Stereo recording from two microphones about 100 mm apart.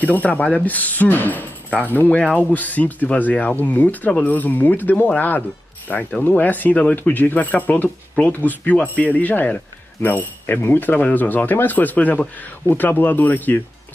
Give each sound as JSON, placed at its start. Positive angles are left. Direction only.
{"t": 0.0, "sound": "speech", "side_deg": 15}